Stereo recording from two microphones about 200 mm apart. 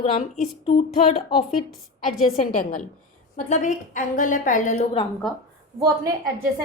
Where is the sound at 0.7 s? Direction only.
35° left (ahead or behind).